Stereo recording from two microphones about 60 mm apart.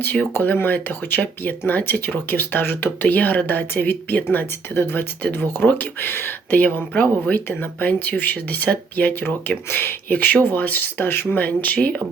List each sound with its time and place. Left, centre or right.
0.0 s speech: left
11.4 s speech: left